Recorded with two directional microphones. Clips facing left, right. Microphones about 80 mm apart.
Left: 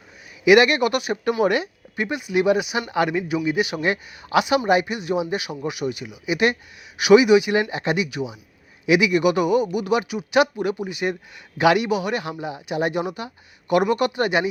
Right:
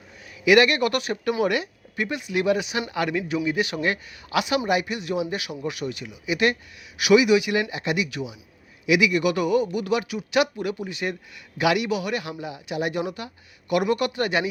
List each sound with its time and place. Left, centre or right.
0.4 s speech: left
1.2 s speech: left
11.6 s a man's voice: left
11.9 s speech: left